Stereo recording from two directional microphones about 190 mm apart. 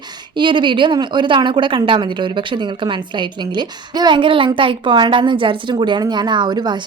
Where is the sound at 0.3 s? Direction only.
25° right (ahead or behind).